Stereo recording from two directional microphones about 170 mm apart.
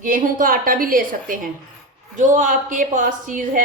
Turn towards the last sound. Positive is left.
turn(degrees=-50)  # may be behind; listen again after turning